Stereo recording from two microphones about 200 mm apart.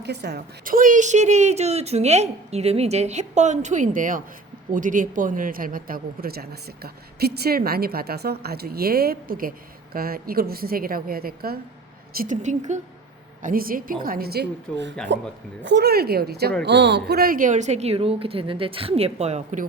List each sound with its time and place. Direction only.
0.0 s a woman's voice: 55° right (ahead or behind); by 19.6 s 35° right (ahead or behind)